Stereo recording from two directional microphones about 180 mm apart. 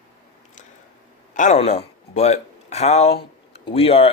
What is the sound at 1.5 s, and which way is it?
Speech, 35° left (ahead or behind).